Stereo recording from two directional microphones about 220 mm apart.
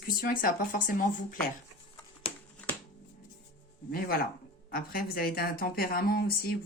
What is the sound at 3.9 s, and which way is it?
A woman's voice, 40° left (ahead or behind).